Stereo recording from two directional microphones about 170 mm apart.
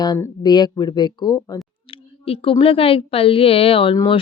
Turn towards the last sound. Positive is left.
turn(degrees=25)  # may be behind; listen again after turning